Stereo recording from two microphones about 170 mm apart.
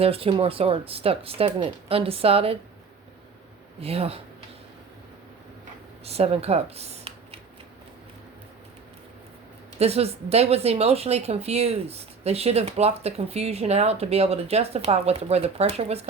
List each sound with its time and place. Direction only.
0.0 s speech: 35° right (ahead or behind)
3.8 s speech: 35° right (ahead or behind)
6.1 s speech: 35° right (ahead or behind)
9.7 s speech: 35° right (ahead or behind)